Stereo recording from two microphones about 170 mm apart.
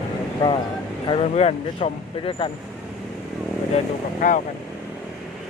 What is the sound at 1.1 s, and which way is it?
Speech, 35° left (ahead or behind).